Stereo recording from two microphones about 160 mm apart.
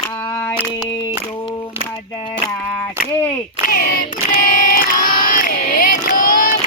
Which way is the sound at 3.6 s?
60° left (ahead or behind).